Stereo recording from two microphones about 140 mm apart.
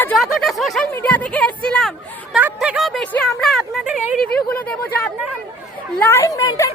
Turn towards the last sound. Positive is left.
turn(degrees=25)  # may be behind; listen again after turning